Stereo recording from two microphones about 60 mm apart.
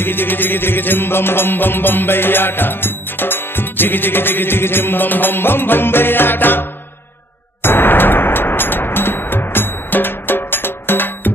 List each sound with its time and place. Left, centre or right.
0.0 s music: left